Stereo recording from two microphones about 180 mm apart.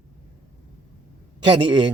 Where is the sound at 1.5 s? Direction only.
25° right (ahead or behind).